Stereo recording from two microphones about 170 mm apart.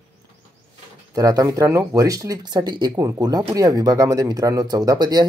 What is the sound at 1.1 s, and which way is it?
Speech, 20° right (ahead or behind).